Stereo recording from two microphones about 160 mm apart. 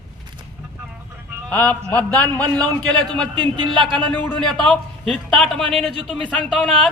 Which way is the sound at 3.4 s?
30° right (ahead or behind).